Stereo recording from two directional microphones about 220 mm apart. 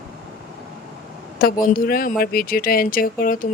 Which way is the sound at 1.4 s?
40° left (ahead or behind).